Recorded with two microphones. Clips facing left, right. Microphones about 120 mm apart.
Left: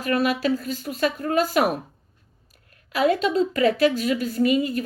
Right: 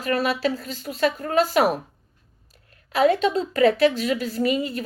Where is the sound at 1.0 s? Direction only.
40° right (ahead or behind).